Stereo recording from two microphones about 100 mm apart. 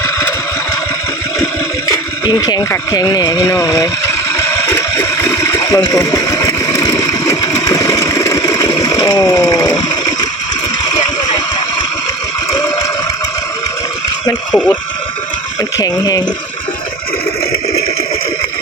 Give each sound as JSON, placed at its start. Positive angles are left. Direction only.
{"t": 2.2, "sound": "speech", "side_deg": 40}
{"t": 4.4, "sound": "a sound", "side_deg": 30}
{"t": 6.1, "sound": "vehicle", "side_deg": 35}
{"t": 7.0, "sound": "a sound", "side_deg": 35}
{"t": 14.5, "sound": "speech", "side_deg": 15}
{"t": 15.8, "sound": "speech", "side_deg": 40}